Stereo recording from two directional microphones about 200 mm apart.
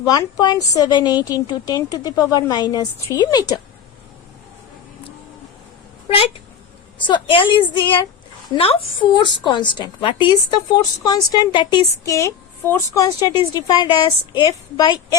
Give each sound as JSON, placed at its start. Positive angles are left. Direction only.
{"t": 0.0, "sound": "a woman's voice", "side_deg": 20}
{"t": 7.1, "sound": "a woman's voice", "side_deg": 25}